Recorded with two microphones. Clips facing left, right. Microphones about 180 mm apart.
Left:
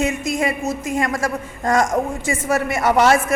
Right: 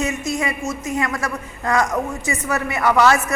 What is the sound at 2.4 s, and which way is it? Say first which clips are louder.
Speech: left 2 dB; 25° left (ahead or behind).